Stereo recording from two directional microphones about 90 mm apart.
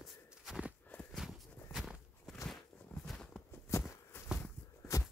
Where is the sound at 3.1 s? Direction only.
10° left (ahead or behind).